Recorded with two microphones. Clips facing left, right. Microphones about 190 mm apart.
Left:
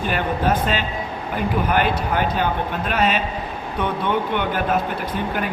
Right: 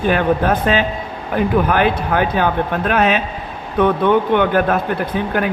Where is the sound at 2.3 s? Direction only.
55° right (ahead or behind).